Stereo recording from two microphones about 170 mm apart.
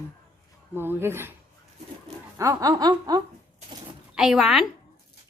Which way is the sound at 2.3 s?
20° right (ahead or behind).